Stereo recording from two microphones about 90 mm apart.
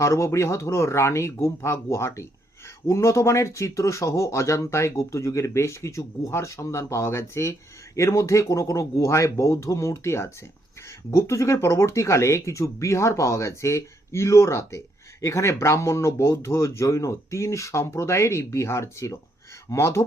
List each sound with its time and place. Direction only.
0.0 s speech: 35° left (ahead or behind)